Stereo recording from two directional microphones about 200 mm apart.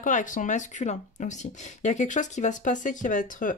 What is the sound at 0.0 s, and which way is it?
Speech, 40° left (ahead or behind).